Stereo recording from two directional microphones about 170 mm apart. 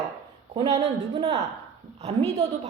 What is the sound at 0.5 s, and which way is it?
A woman's voice, 35° right (ahead or behind).